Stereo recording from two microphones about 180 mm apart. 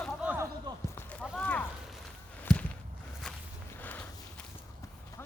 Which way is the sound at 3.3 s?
Centre (ahead or behind).